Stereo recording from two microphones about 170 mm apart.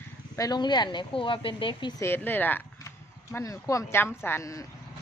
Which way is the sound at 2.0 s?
15° left (ahead or behind).